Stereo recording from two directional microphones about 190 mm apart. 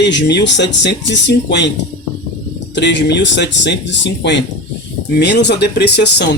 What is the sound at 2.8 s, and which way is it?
Speech, 65° left (ahead or behind).